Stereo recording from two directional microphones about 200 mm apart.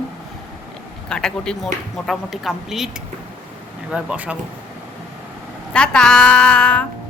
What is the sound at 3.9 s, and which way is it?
Speech, 5° right (ahead or behind).